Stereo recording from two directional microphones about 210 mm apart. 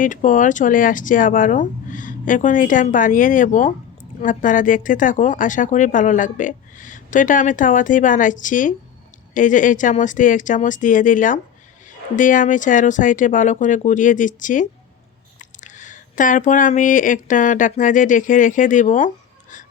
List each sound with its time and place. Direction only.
0.0 s speech: 40° left (ahead or behind)